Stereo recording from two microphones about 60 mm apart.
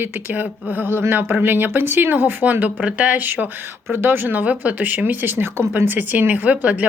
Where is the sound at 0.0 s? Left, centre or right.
Right.